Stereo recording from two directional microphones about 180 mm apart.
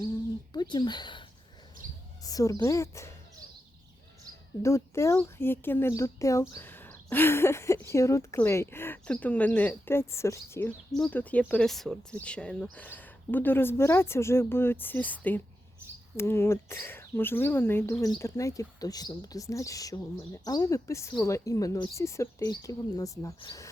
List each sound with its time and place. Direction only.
0.5 s speech: 25° left (ahead or behind)
2.2 s a woman's voice: 20° left (ahead or behind)
4.6 s speech: 15° left (ahead or behind)